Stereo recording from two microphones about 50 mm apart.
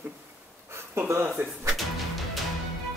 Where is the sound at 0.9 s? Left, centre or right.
Right.